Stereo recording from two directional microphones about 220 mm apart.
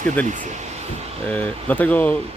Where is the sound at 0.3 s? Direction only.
35° right (ahead or behind).